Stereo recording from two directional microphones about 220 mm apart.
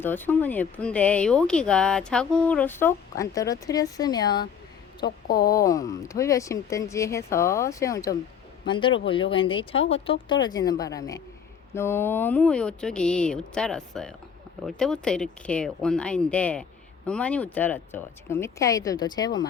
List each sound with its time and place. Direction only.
0.0 s speech: 10° left (ahead or behind)
5.0 s speech: 45° left (ahead or behind)
5.5 s speech: 15° left (ahead or behind)